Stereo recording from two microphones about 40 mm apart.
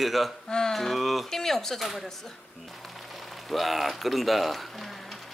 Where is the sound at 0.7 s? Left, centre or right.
Centre.